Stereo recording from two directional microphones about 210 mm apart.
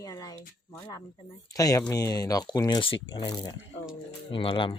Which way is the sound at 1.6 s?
15° left (ahead or behind).